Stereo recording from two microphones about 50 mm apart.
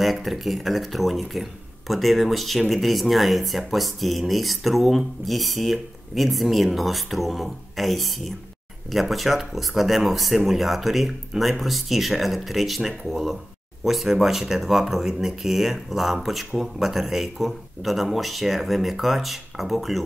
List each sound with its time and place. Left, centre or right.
0.0 s speech: centre